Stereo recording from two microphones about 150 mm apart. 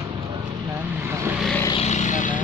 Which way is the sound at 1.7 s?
50° left (ahead or behind).